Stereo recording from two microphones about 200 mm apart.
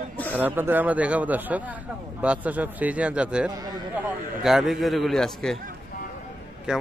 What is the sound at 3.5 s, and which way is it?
Speech, 20° right (ahead or behind).